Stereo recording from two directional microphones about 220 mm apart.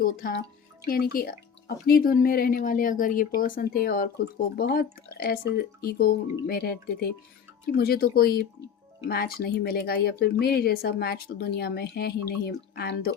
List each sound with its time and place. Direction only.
0.0 s speech: 40° left (ahead or behind)